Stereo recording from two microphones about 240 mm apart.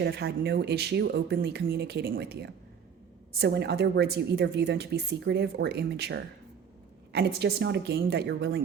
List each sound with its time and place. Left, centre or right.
0.0 s a woman's voice: right